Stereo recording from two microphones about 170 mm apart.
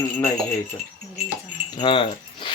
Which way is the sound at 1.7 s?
30° left (ahead or behind).